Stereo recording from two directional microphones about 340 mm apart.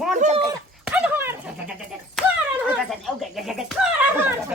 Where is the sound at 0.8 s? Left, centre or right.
Centre.